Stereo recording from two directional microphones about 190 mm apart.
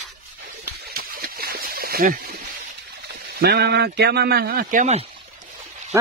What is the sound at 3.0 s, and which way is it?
Speech, 55° right (ahead or behind).